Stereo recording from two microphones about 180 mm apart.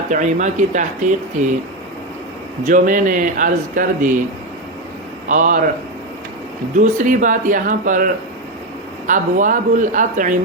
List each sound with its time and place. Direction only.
0.1 s speech: 45° right (ahead or behind)
2.6 s speech: 45° right (ahead or behind)
5.3 s speech: 45° right (ahead or behind)
6.7 s speech: 45° right (ahead or behind)